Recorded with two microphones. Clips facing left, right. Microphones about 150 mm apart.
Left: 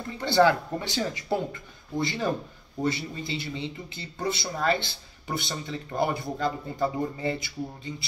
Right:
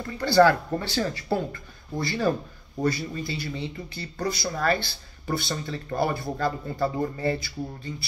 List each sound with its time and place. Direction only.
0.2 s speech: 20° left (ahead or behind)